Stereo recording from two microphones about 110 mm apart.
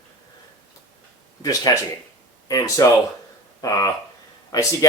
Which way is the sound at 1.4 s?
30° left (ahead or behind).